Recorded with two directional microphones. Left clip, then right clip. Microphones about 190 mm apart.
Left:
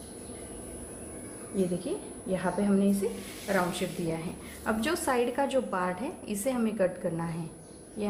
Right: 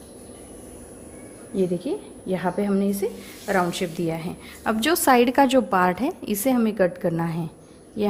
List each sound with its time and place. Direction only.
1.9 s a woman's voice: 40° right (ahead or behind)